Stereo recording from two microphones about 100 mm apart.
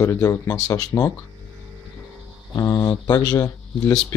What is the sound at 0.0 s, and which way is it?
Speech, 30° left (ahead or behind).